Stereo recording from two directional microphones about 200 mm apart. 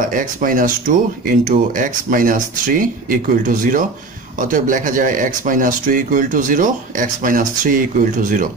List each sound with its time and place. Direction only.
0.1 s speech: 45° right (ahead or behind)